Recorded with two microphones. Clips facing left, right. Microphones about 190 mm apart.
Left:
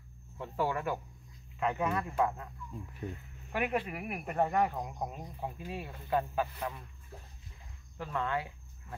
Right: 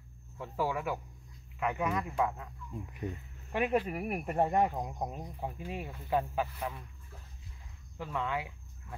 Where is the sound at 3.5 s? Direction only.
30° right (ahead or behind); by 6.7 s 15° right (ahead or behind).